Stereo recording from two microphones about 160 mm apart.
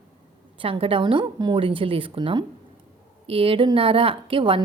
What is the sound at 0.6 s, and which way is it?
A woman's voice, 35° right (ahead or behind).